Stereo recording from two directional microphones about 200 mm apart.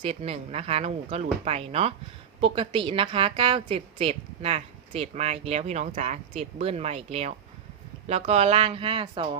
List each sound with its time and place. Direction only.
0.0 s a woman's voice: 30° right (ahead or behind)